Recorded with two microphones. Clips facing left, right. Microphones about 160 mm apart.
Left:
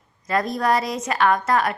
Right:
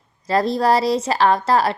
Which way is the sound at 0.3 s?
30° right (ahead or behind).